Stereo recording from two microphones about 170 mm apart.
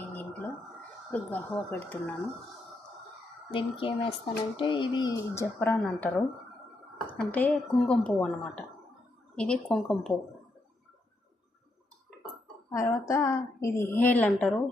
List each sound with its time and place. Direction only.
1.1 s a woman's voice: 10° left (ahead or behind)
3.5 s a woman's voice: 30° left (ahead or behind); by 10.2 s centre (ahead or behind)
12.7 s a woman's voice: 15° left (ahead or behind)